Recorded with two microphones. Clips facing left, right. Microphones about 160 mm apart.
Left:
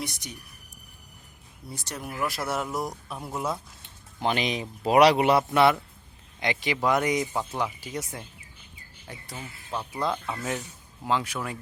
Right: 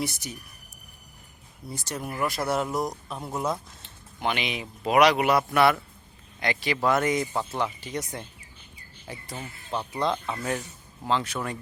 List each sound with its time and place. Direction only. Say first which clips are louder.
0.0 s speech: right 4 dB; 5° right (ahead or behind)
1.6 s speech: right 3 dB; centre (ahead or behind)
4.2 s speech: left 2 dB; 35° left (ahead or behind); by 11.5 s 5° left (ahead or behind)